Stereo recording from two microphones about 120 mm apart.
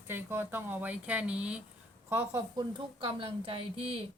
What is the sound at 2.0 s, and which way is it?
Speech, 25° right (ahead or behind).